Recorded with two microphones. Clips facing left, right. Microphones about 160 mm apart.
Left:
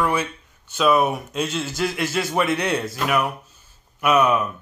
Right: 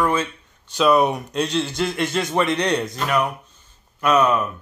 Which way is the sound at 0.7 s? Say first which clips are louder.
Right 2 dB; centre (ahead or behind).